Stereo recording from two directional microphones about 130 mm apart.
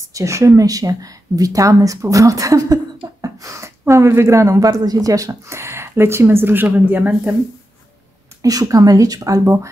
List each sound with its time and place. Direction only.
0.1 s speech: 25° right (ahead or behind)
8.4 s speech: 25° right (ahead or behind)